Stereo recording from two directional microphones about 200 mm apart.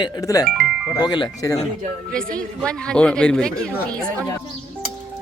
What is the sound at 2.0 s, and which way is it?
A man's voice, 5° left (ahead or behind).